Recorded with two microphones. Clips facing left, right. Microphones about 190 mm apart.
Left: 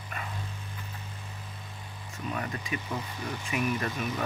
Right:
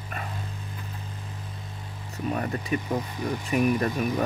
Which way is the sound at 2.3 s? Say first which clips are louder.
Right 6 dB; 40° right (ahead or behind).